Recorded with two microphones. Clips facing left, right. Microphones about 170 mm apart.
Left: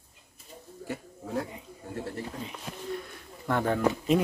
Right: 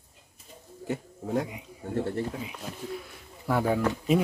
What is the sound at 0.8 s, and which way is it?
Speech, 20° right (ahead or behind).